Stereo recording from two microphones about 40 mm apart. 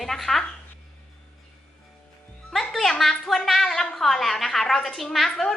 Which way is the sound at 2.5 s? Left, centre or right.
Centre.